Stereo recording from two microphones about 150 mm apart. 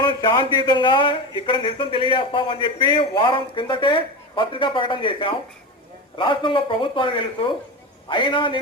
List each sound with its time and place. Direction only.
0.0 s a man's voice: 30° left (ahead or behind)